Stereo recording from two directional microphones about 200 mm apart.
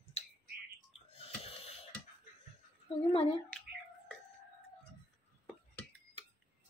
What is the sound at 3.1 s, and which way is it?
Speech, 25° left (ahead or behind).